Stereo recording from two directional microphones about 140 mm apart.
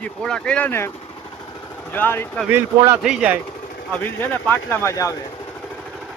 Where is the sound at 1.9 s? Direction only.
15° left (ahead or behind).